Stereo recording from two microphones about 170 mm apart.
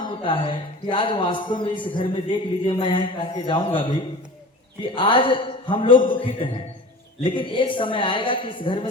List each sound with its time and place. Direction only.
0.0 s a man's voice: 30° left (ahead or behind)
4.9 s a man's voice: 30° left (ahead or behind)